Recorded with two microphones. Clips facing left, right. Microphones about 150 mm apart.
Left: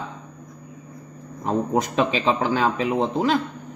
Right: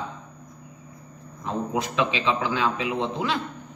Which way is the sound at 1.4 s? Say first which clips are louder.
Left 5 dB; 45° left (ahead or behind).